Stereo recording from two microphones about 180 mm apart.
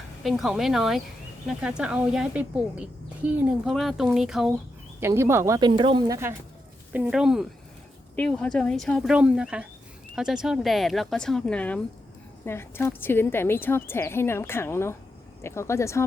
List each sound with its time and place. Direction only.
0.2 s speech: centre (ahead or behind)
4.9 s speech: 15° right (ahead or behind)
6.9 s speech: 5° right (ahead or behind); by 16.0 s 15° left (ahead or behind)